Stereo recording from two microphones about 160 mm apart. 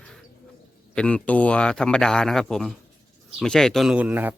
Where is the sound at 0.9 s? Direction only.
5° left (ahead or behind); by 4.3 s 10° right (ahead or behind).